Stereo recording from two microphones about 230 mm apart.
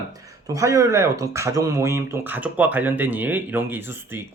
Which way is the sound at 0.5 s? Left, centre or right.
Centre.